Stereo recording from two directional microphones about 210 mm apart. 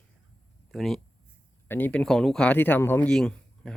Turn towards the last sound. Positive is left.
turn(degrees=5)  # may be behind; listen again after turning